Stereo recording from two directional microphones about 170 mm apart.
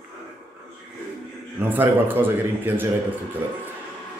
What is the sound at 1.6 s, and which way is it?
Speech, 10° right (ahead or behind).